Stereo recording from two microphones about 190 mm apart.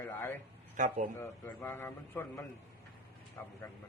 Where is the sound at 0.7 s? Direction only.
40° right (ahead or behind).